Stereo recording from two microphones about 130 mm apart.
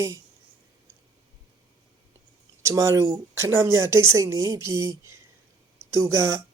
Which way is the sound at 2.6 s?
25° right (ahead or behind).